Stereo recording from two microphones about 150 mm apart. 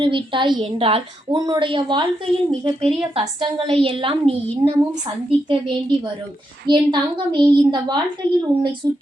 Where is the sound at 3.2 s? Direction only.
35° right (ahead or behind).